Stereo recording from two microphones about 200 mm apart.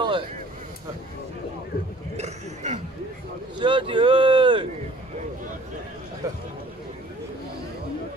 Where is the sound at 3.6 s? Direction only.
25° right (ahead or behind).